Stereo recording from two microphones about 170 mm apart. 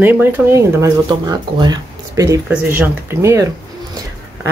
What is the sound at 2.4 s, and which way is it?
Speech, 10° right (ahead or behind).